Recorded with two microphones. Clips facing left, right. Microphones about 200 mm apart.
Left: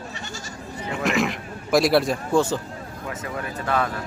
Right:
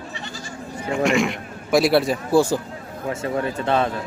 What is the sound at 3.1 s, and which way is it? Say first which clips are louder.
Speech: right 8 dB; 30° right (ahead or behind).